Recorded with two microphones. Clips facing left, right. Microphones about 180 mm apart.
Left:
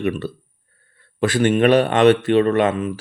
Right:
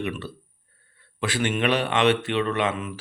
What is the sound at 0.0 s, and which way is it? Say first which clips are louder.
Speech: left 7 dB; 45° left (ahead or behind).